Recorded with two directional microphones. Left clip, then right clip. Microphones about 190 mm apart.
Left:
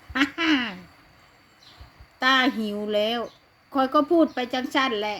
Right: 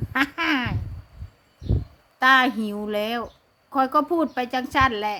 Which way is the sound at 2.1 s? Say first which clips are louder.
Right 3 dB; 15° right (ahead or behind).